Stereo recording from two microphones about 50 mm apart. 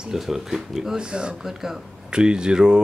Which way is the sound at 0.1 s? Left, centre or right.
Centre.